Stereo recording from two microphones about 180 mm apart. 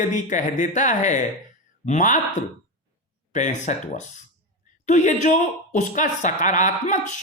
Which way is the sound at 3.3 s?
40° left (ahead or behind).